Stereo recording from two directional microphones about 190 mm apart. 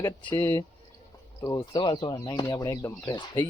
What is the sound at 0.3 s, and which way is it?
Speech, 15° left (ahead or behind).